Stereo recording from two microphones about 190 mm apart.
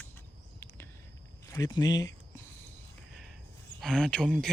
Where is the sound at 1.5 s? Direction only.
20° left (ahead or behind).